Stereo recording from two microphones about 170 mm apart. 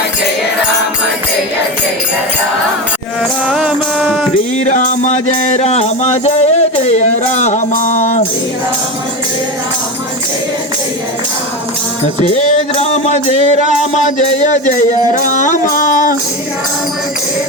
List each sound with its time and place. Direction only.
3.5 s music: 5° right (ahead or behind)
4.7 s music: 45° left (ahead or behind)
12.2 s music: 40° left (ahead or behind)